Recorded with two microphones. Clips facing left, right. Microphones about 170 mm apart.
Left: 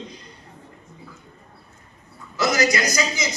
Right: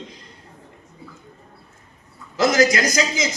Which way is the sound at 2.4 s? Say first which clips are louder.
Right 4 dB; 50° right (ahead or behind).